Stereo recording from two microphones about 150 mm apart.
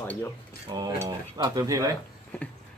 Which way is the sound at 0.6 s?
25° right (ahead or behind).